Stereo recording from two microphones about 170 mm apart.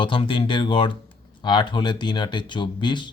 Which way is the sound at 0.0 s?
30° left (ahead or behind).